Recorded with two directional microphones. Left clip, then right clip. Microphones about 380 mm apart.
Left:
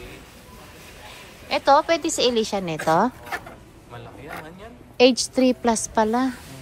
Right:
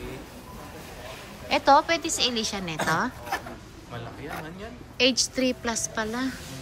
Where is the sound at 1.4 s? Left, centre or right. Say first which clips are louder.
Left 2 dB; centre.